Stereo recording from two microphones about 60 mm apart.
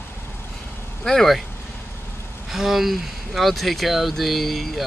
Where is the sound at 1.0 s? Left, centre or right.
Centre.